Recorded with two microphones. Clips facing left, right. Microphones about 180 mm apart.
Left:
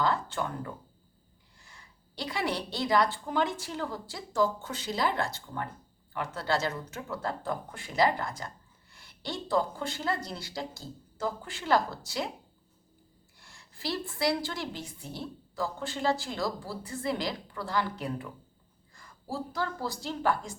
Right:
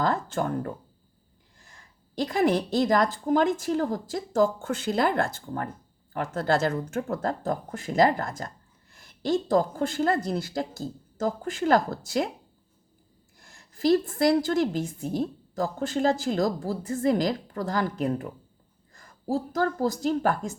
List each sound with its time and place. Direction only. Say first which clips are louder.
0.0 s a woman's voice: right 4 dB; 45° right (ahead or behind)
13.4 s a woman's voice: right 12 dB; 45° right (ahead or behind)